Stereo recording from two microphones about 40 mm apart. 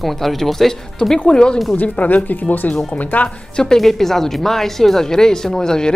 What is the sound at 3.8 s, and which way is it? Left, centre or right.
Speech, centre.